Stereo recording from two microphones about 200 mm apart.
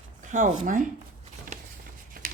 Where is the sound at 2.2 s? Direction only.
45° right (ahead or behind).